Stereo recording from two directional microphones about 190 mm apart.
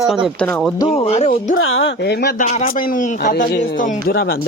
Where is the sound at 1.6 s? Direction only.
90° left; by 2.3 s 60° left (ahead or behind).